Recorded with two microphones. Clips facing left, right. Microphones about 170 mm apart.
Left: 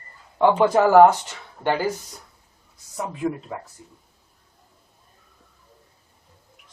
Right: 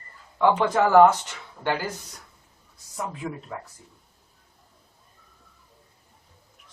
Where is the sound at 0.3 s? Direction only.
30° left (ahead or behind).